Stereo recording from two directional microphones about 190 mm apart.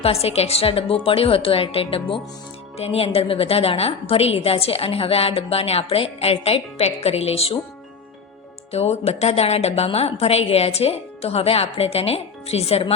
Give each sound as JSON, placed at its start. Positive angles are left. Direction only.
{"t": 0.0, "sound": "a woman's voice", "side_deg": 30}
{"t": 8.7, "sound": "a woman's voice", "side_deg": 35}